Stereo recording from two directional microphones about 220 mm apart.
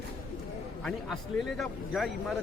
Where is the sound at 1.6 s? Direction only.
Centre (ahead or behind).